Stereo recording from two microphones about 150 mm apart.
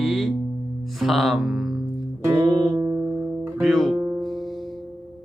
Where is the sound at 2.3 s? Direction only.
25° right (ahead or behind).